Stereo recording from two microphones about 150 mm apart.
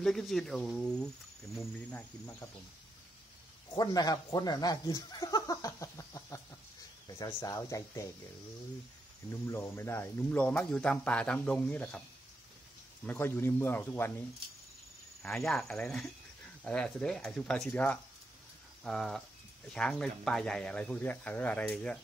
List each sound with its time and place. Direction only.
0.0 s speech: centre (ahead or behind)
3.7 s speech: 25° left (ahead or behind)
9.3 s speech: 15° left (ahead or behind)
13.0 s speech: 15° left (ahead or behind)
15.2 s speech: centre (ahead or behind)